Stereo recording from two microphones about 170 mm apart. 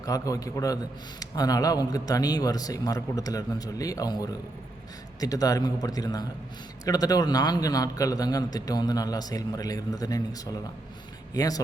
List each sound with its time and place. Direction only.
0.0 s a man's voice: 20° left (ahead or behind)